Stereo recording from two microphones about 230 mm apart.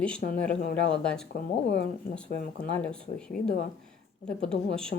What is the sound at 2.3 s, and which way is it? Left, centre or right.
Speech, left.